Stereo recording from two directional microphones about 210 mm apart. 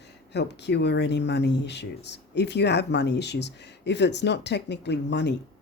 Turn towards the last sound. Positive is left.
turn(degrees=55)  # may be behind; listen again after turning